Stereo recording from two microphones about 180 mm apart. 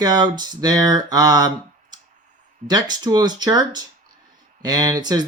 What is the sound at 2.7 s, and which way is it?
Speech, 25° right (ahead or behind).